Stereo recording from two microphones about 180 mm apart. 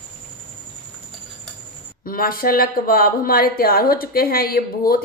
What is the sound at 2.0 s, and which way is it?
Speech, 55° left (ahead or behind).